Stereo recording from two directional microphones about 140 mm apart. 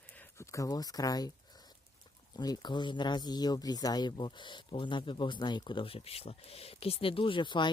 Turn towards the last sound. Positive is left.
turn(degrees=35)  # may be behind; listen again after turning